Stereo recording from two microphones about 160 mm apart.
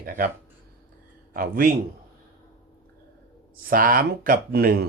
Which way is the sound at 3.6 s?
60° right (ahead or behind).